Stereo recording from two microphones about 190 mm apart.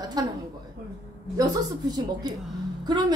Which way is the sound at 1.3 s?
20° right (ahead or behind).